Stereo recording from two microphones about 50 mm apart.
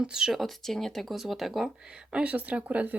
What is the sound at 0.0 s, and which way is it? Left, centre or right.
Speech, centre.